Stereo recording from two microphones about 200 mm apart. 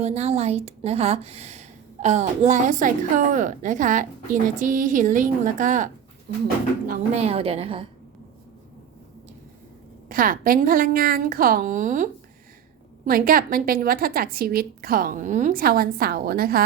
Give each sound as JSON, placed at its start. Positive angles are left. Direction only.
{"t": 0.0, "sound": "a woman's voice", "side_deg": -30}
{"t": 7.1, "sound": "a woman's voice", "side_deg": -30}
{"t": 10.1, "sound": "a woman's voice", "side_deg": -45}